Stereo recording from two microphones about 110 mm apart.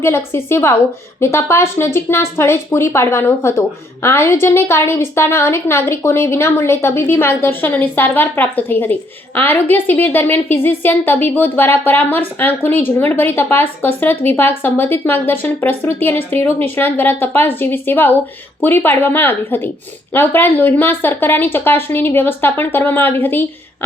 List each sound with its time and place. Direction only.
0.0 s a woman's voice: 20° left (ahead or behind)